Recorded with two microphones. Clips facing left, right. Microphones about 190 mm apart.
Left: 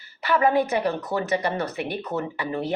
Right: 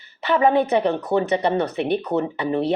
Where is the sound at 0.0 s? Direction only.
20° right (ahead or behind).